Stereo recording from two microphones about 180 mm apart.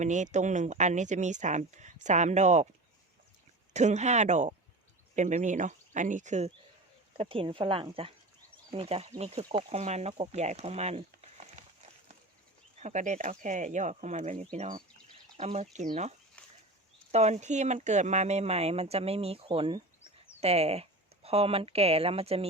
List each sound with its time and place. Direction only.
0.0 s speech: 40° right (ahead or behind)
3.7 s speech: 40° right (ahead or behind)
7.2 s speech: 30° right (ahead or behind)
12.8 s speech: 40° right (ahead or behind)
17.1 s speech: 40° right (ahead or behind)